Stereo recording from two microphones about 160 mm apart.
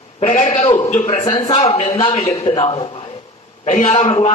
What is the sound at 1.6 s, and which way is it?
A man's voice, 40° left (ahead or behind).